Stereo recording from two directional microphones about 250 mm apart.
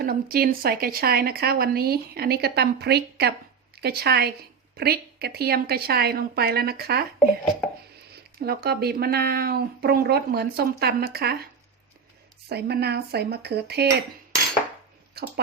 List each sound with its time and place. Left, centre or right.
0.0 s a woman's voice: right
8.4 s a woman's voice: right
12.5 s a woman's voice: right